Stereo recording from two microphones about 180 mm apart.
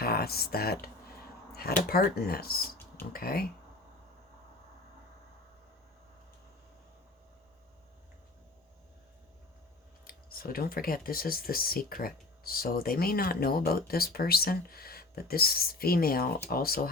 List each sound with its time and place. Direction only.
0.0 s speech: 60° left (ahead or behind)
10.1 s speech: 55° left (ahead or behind)